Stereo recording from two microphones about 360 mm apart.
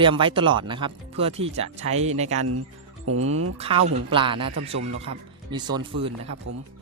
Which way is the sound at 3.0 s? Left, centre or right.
Right.